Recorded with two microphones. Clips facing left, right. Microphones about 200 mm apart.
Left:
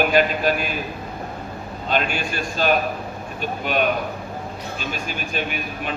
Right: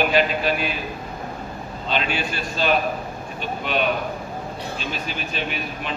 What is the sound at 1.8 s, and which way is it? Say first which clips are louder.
A man's voice: left 2 dB; 45° left (ahead or behind).